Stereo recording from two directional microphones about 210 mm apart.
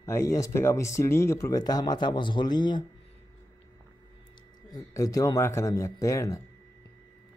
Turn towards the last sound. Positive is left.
turn(degrees=15)  # may be behind; listen again after turning